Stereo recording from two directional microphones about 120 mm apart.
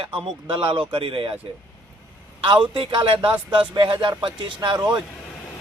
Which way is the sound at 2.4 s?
45° right (ahead or behind).